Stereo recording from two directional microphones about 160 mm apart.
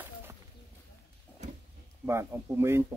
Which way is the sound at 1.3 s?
10° left (ahead or behind).